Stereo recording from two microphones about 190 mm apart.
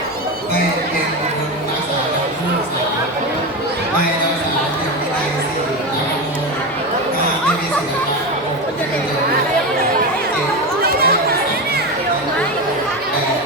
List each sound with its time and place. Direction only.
10.8 s chatter: 55° right (ahead or behind)